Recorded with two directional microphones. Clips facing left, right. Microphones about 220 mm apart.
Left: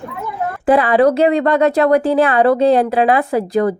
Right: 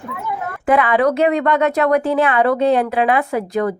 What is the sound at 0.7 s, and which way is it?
Speech, 35° left (ahead or behind).